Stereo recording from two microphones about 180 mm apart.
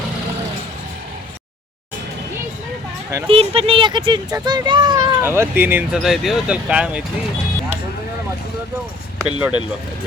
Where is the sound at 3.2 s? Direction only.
30° right (ahead or behind); by 7.0 s 5° right (ahead or behind).